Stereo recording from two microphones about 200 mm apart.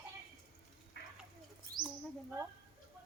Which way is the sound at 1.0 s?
55° left (ahead or behind).